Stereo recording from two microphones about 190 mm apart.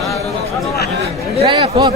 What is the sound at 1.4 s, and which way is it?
Speech, 25° right (ahead or behind).